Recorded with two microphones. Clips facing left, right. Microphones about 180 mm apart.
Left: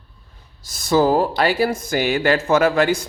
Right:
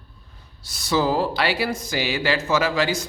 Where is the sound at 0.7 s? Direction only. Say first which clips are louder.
Left 5 dB; 50° left (ahead or behind).